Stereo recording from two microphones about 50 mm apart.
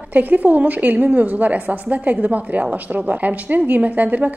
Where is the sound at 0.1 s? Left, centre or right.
Right.